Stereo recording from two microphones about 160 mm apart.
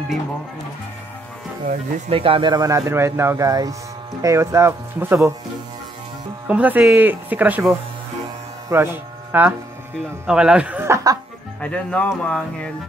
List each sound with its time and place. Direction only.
2.0 s speech: 35° right (ahead or behind); by 5.3 s 15° right (ahead or behind)
6.4 s speech: 10° right (ahead or behind)
8.6 s speech: 15° right (ahead or behind)
11.6 s speech: 5° left (ahead or behind)